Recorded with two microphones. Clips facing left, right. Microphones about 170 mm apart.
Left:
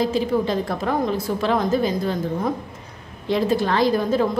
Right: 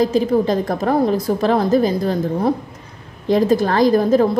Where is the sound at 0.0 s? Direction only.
45° right (ahead or behind).